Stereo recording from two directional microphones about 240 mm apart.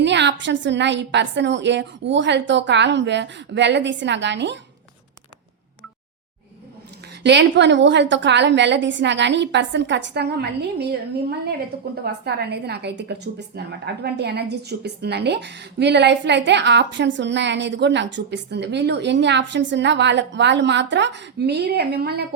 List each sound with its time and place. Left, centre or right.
0.0 s a woman's voice: right
7.2 s a woman's voice: right
12.0 s a woman's voice: right